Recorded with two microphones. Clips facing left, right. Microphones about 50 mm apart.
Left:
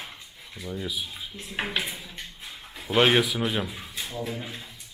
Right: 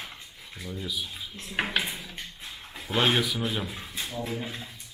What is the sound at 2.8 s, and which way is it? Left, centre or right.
Speech, left.